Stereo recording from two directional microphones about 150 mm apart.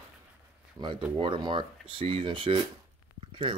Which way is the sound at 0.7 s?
30° right (ahead or behind).